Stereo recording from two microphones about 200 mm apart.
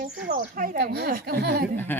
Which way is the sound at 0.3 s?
45° right (ahead or behind).